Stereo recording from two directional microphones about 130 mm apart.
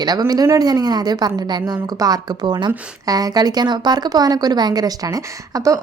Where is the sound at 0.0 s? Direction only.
30° right (ahead or behind).